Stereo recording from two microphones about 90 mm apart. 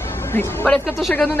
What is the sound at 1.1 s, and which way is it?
Speech, 20° left (ahead or behind).